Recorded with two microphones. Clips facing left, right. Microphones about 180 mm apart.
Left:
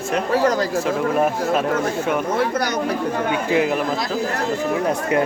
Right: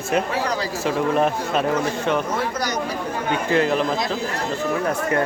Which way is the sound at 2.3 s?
55° left (ahead or behind).